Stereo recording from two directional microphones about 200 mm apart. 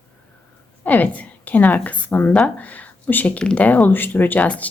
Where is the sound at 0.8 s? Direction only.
10° left (ahead or behind).